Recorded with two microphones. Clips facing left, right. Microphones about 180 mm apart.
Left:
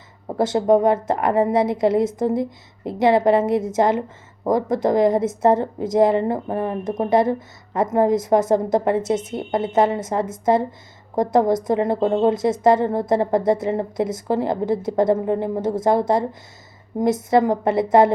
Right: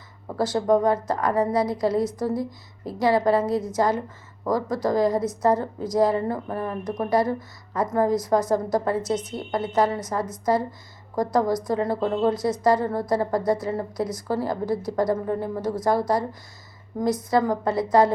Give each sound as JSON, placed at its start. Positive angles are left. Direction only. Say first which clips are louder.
{"t": 0.3, "sound": "a woman's voice", "louder": "left 4 dB", "side_deg": 20}